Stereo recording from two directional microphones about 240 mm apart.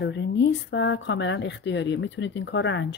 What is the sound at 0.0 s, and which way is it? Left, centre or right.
Speech, left.